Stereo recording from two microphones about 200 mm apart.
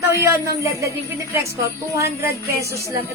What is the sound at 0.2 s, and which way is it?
Speech, 15° right (ahead or behind).